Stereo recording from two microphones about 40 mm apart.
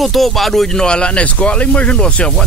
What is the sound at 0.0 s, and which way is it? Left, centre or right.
Speech, centre.